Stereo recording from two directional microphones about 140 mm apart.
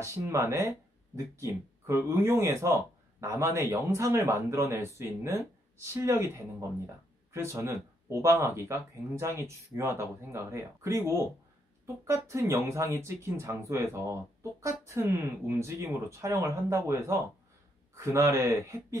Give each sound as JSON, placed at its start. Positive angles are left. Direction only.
{"t": 0.0, "sound": "speech", "side_deg": -20}